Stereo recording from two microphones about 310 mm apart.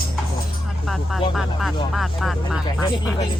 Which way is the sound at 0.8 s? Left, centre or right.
Centre.